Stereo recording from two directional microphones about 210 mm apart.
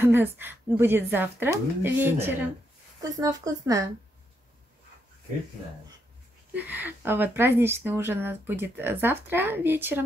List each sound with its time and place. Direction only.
0.0 s speech: 10° right (ahead or behind)
6.5 s speech: 10° right (ahead or behind)